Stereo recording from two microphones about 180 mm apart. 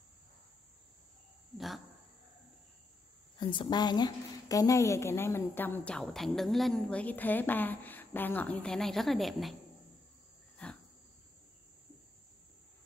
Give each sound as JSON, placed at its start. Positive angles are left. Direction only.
{"t": 3.3, "sound": "a woman's voice", "side_deg": 25}